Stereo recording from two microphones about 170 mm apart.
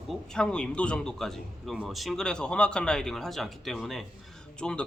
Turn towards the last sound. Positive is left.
turn(degrees=5)  # may be behind; listen again after turning